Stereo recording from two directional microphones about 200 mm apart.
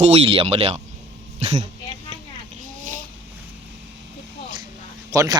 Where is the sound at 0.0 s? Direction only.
30° right (ahead or behind).